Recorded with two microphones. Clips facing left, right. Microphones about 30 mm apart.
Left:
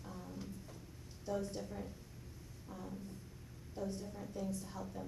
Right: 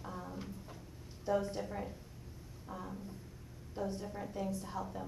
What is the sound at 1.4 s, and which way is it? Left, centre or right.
Speech, centre.